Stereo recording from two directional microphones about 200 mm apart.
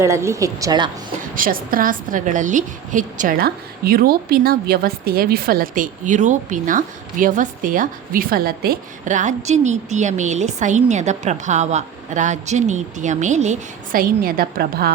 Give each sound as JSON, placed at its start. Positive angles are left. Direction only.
{"t": 0.0, "sound": "speech", "side_deg": -15}
{"t": 1.4, "sound": "a woman's voice", "side_deg": -45}